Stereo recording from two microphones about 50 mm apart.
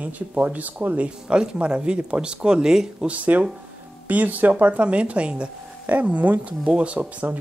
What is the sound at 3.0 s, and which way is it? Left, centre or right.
Speech, right.